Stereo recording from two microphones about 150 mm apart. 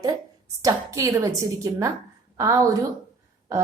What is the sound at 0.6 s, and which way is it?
A woman's voice, 20° right (ahead or behind).